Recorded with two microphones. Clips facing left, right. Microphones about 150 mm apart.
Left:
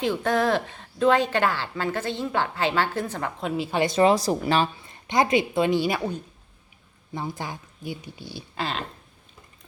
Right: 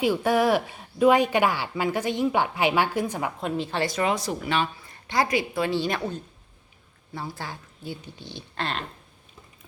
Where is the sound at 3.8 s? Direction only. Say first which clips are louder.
Left 8 dB; 25° left (ahead or behind).